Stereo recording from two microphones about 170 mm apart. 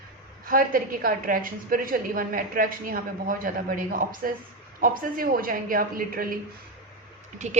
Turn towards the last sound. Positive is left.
turn(degrees=-45)  # may be behind; listen again after turning